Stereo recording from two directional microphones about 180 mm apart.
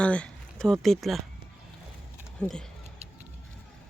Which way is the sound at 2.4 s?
5° left (ahead or behind).